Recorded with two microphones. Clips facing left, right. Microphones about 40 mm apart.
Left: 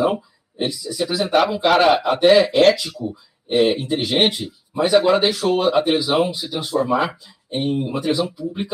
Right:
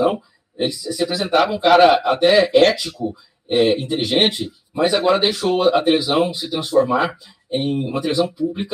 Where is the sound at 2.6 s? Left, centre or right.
Centre.